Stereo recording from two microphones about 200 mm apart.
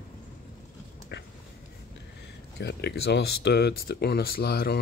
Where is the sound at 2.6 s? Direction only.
55° left (ahead or behind).